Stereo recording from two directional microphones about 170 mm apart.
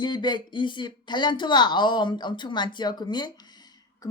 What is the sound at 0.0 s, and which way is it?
A woman's voice, 25° left (ahead or behind).